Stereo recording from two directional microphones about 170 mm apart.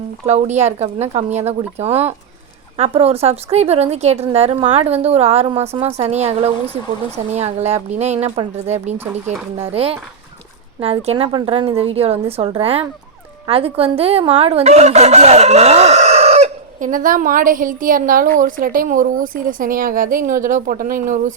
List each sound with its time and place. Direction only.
0.3 s a woman's voice: 40° right (ahead or behind)